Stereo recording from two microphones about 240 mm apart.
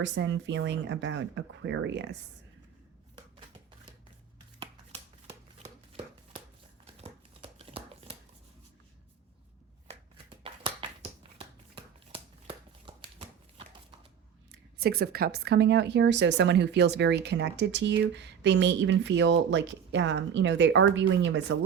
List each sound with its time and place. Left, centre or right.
0.0 s a woman's voice: right
7.0 s shuffling cards: right
9.8 s a sound: right
14.8 s a woman's voice: right